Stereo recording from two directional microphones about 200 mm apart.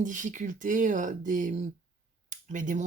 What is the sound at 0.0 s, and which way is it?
Speech, 40° right (ahead or behind).